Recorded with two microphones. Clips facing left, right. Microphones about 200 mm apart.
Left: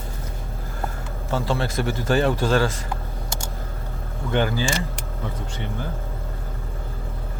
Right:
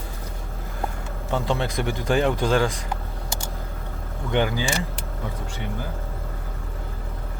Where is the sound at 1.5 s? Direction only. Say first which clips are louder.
Left 1 dB; 15° right (ahead or behind).